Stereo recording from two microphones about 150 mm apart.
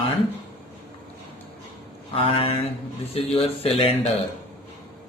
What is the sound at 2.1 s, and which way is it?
A man's voice, 40° left (ahead or behind).